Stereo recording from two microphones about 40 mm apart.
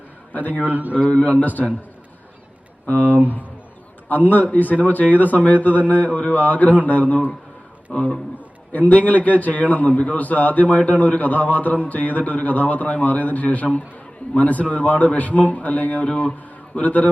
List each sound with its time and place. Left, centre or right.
0.3 s a man's voice: left
0.7 s speech: right
1.1 s a man's voice: left
2.9 s speech: right
4.1 s a man's voice: left
16.0 s speech: left
16.7 s a man's voice: left